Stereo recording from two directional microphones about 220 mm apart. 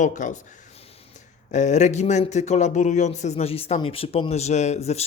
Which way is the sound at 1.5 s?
30° left (ahead or behind).